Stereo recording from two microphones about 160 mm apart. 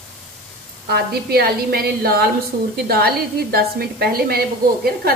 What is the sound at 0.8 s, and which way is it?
A woman's voice, 75° right (ahead or behind).